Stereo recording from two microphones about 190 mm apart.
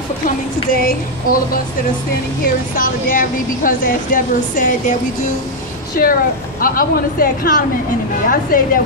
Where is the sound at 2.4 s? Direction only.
45° left (ahead or behind).